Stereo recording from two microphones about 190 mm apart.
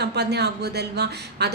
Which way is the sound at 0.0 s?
60° right (ahead or behind).